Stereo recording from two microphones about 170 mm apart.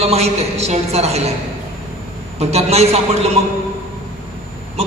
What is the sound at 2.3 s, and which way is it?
Speech, 40° right (ahead or behind).